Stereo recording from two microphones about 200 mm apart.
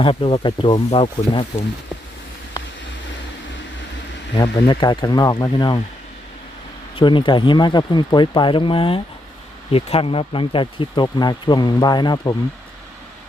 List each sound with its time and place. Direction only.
0.0 s speech: 25° left (ahead or behind)
4.4 s speech: 20° left (ahead or behind)
7.0 s speech: 25° left (ahead or behind)